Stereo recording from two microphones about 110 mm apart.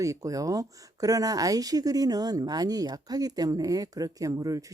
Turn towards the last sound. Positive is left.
turn(degrees=-30)  # may be behind; listen again after turning